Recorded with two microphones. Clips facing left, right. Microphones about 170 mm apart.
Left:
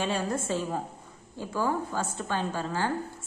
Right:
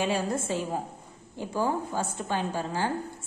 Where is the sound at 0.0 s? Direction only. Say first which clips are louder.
Right 1 dB; 10° right (ahead or behind).